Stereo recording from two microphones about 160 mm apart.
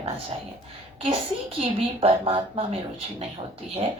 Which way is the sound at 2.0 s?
35° right (ahead or behind).